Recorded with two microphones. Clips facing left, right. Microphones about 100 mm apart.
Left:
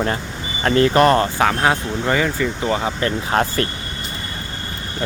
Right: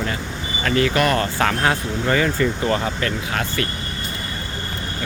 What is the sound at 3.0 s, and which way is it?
Speech, 35° left (ahead or behind).